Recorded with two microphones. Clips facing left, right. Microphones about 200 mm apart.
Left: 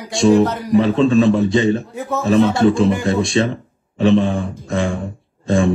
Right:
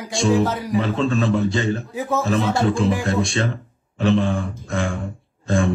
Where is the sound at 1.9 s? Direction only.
Centre (ahead or behind).